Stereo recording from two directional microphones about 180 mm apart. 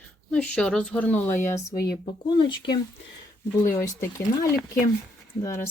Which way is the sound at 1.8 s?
20° left (ahead or behind).